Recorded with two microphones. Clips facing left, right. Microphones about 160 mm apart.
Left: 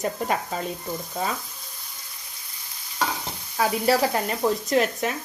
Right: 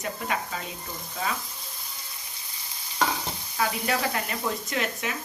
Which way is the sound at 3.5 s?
35° left (ahead or behind).